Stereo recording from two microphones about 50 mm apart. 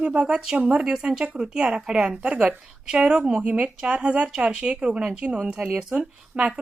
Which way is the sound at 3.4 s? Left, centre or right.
Right.